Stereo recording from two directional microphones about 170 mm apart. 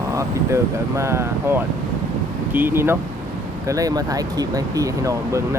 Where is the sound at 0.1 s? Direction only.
15° right (ahead or behind).